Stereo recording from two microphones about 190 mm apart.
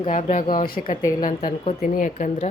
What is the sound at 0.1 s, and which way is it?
Speech, 40° left (ahead or behind).